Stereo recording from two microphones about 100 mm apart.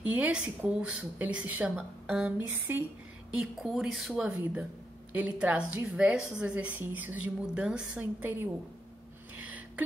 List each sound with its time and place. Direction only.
0.2 s a woman's voice: 10° right (ahead or behind)
3.3 s a woman's voice: centre (ahead or behind); by 8.5 s 15° right (ahead or behind)
9.4 s a sound: 15° right (ahead or behind)